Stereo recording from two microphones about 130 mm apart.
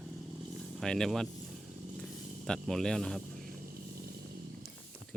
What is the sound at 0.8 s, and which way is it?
Speech, 5° left (ahead or behind).